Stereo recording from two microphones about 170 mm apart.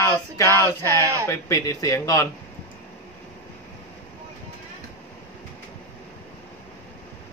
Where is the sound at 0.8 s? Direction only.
20° right (ahead or behind).